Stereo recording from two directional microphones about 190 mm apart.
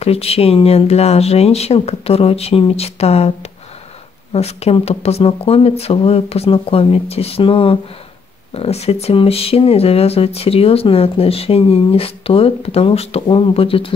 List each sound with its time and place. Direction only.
0.0 s speech: 30° left (ahead or behind)
4.3 s speech: 30° left (ahead or behind)